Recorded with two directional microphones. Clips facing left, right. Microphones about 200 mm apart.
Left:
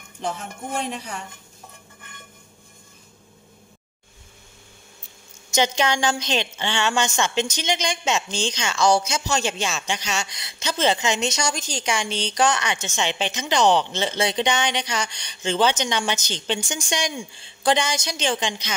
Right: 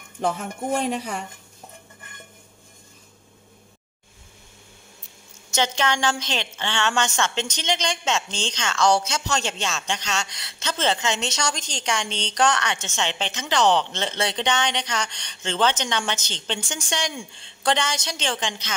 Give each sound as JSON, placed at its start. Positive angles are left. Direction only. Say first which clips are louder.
{"t": 5.5, "sound": "a woman's voice", "louder": "left 2 dB", "side_deg": 15}